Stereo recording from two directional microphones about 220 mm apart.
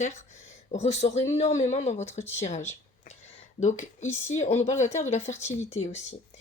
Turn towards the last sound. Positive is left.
turn(degrees=30)  # may be behind; listen again after turning